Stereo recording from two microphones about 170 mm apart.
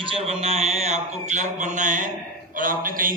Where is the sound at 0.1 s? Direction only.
35° right (ahead or behind).